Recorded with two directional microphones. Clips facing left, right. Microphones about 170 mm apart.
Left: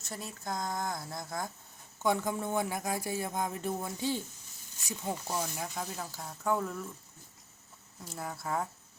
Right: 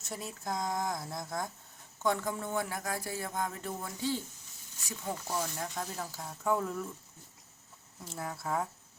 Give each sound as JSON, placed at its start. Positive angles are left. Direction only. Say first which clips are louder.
{"t": 0.0, "sound": "speech", "louder": "right 1 dB", "side_deg": 0}
{"t": 2.0, "sound": "speech", "louder": "left 2 dB", "side_deg": 15}
{"t": 8.0, "sound": "speech", "louder": "even", "side_deg": 0}